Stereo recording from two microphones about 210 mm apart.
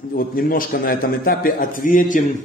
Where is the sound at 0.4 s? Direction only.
45° left (ahead or behind).